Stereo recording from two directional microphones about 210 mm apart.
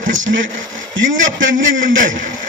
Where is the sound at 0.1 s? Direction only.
65° right (ahead or behind).